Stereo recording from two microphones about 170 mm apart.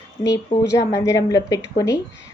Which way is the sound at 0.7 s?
20° left (ahead or behind).